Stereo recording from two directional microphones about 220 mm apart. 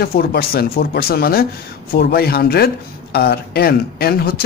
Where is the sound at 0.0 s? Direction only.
45° left (ahead or behind).